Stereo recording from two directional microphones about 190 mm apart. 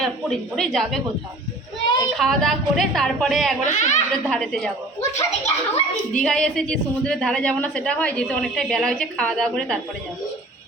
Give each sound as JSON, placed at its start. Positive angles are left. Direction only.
{"t": 0.0, "sound": "a woman's voice", "side_deg": 5}
{"t": 2.1, "sound": "a woman's voice", "side_deg": 0}
{"t": 3.6, "sound": "speech", "side_deg": 40}
{"t": 4.1, "sound": "a woman's voice", "side_deg": 5}
{"t": 5.1, "sound": "speech", "side_deg": 35}
{"t": 6.1, "sound": "a woman's voice", "side_deg": 5}